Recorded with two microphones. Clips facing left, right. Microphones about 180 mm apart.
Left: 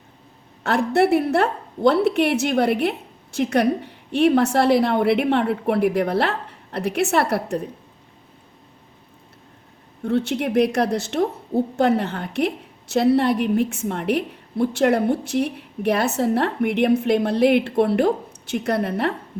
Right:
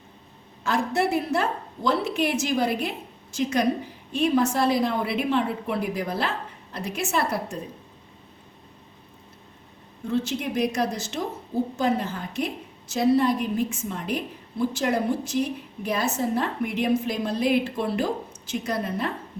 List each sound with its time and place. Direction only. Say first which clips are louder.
0.6 s a woman's voice: left 6 dB; 65° left (ahead or behind)
10.0 s a woman's voice: left 5 dB; 65° left (ahead or behind)